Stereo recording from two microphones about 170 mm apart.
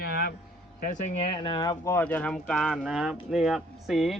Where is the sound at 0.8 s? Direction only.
50° left (ahead or behind).